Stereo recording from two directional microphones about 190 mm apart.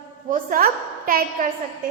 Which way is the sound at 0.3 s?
50° right (ahead or behind).